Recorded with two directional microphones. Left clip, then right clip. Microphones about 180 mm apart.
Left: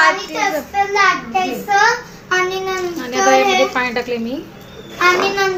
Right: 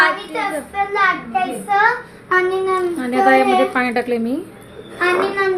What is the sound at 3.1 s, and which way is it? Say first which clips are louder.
A woman's voice: even; 50° right (ahead or behind).